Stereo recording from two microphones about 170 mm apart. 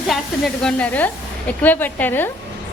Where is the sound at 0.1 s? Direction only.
5° left (ahead or behind).